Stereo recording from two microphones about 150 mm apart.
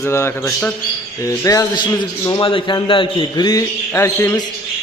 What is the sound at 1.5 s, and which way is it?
A man's voice, 20° left (ahead or behind).